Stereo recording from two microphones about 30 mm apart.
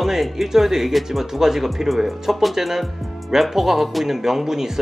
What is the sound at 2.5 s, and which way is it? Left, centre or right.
Speech, centre.